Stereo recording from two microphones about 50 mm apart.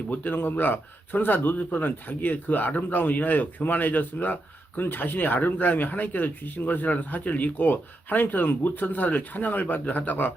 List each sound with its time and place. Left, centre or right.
0.1 s speech: left